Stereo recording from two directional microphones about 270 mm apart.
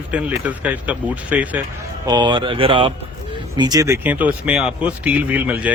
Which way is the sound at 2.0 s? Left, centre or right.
Centre.